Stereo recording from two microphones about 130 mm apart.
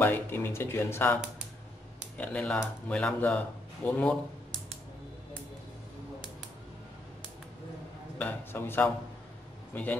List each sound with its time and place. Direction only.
0.0 s speech: 15° left (ahead or behind)
8.2 s speech: 15° left (ahead or behind)